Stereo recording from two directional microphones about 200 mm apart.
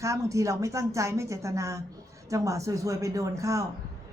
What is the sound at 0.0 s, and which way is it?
A woman's voice, 15° right (ahead or behind).